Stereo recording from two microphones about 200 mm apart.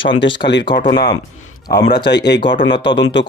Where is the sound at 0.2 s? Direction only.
60° left (ahead or behind).